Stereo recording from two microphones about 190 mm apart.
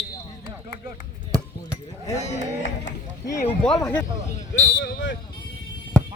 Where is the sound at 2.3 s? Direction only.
40° left (ahead or behind).